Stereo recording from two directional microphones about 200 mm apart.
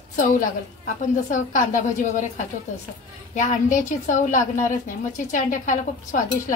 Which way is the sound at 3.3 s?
40° left (ahead or behind).